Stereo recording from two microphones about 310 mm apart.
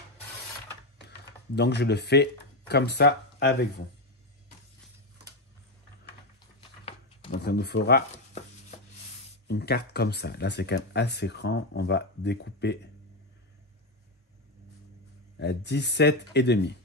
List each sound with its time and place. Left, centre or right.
1.0 s typing: left
2.7 s speech: left
7.2 s speech: left
9.5 s speech: left
15.3 s speech: left